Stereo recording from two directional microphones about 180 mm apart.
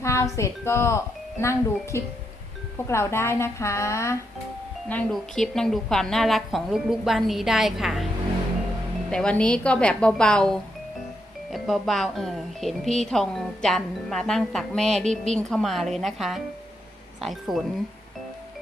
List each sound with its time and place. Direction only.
0.0 s speech: 15° left (ahead or behind)
4.9 s a woman's voice: 5° left (ahead or behind)
9.0 s a woman's voice: 5° left (ahead or behind)